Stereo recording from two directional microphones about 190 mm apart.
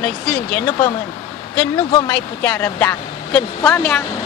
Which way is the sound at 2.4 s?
10° left (ahead or behind).